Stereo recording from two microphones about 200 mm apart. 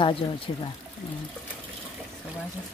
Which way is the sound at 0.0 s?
25° left (ahead or behind).